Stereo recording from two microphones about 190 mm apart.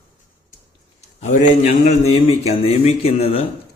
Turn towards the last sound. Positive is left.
turn(degrees=30)  # may be behind; listen again after turning